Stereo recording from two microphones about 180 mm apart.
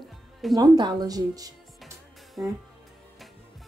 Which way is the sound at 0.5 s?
25° right (ahead or behind).